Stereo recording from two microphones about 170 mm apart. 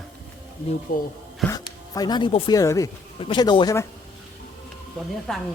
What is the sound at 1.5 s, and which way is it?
Speech, 20° left (ahead or behind).